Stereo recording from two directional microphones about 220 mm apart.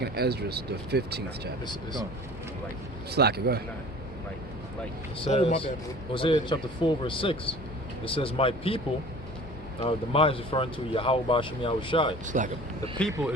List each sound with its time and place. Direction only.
0.0 s speech: 45° right (ahead or behind)
1.6 s speech: 20° left (ahead or behind)
3.1 s speech: 45° right (ahead or behind)
5.2 s speech: 25° left (ahead or behind)
9.8 s speech: 25° left (ahead or behind)
12.2 s speech: 35° right (ahead or behind)